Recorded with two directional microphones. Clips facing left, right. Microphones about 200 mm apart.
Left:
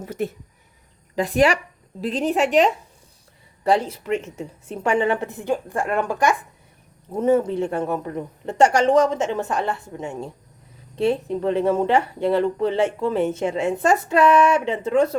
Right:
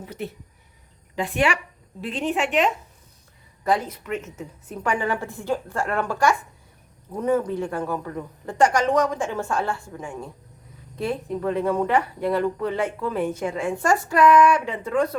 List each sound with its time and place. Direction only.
0.0 s a woman's voice: 45° left (ahead or behind); by 15.2 s 25° left (ahead or behind)